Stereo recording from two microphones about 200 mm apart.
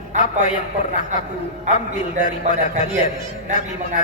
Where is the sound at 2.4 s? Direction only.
35° right (ahead or behind).